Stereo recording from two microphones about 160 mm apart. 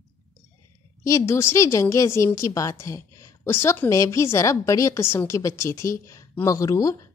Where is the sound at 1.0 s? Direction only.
20° left (ahead or behind).